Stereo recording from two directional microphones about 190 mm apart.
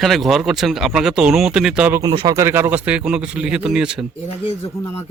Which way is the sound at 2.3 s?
15° right (ahead or behind).